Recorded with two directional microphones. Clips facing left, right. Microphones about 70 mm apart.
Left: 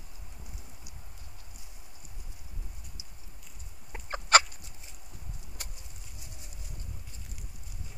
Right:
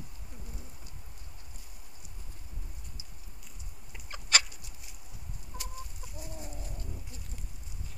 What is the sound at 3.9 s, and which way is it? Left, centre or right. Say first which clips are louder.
Chicken: left 9 dB; left.